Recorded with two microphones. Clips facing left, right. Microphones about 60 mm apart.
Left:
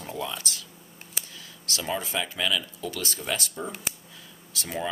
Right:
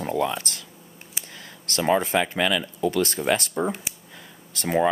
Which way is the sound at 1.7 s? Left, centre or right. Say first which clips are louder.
Right 9 dB; right.